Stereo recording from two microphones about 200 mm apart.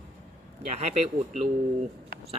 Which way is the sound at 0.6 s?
35° right (ahead or behind).